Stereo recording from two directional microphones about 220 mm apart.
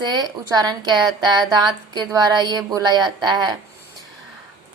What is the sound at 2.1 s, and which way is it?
A woman's voice, 15° right (ahead or behind).